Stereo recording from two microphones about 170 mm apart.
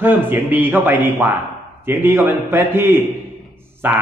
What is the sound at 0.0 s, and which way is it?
A man's voice, 10° right (ahead or behind).